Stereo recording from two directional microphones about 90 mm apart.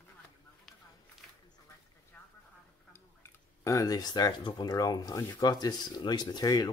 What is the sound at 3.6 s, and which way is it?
Speech, 35° left (ahead or behind).